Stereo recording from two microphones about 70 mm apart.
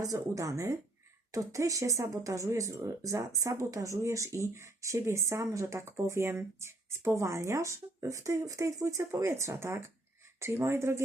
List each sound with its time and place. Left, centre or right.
0.0 s a woman's voice: right